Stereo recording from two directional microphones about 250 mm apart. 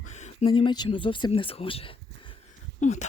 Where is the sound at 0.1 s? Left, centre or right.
Left.